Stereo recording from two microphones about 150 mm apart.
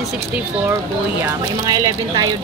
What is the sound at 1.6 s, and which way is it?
Speech, 25° right (ahead or behind).